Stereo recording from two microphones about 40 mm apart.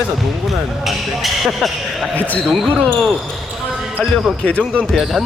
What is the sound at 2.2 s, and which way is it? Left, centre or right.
Speech, left.